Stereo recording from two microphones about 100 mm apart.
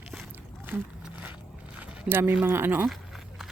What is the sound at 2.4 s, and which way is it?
Speech, 20° right (ahead or behind).